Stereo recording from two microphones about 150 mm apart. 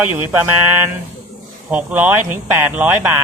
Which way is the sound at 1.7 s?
10° right (ahead or behind).